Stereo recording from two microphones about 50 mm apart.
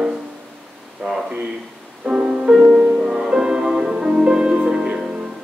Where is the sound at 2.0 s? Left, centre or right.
Centre.